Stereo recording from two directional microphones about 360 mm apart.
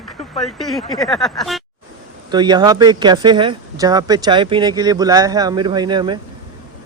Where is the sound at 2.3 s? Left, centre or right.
Centre.